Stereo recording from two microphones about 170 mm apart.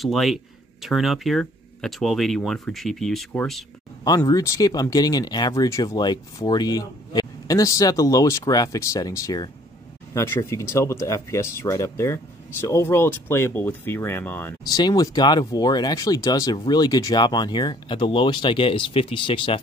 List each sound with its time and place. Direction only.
0.0 s speech: centre (ahead or behind)
4.0 s speech: 20° left (ahead or behind)
14.6 s speech: 25° left (ahead or behind)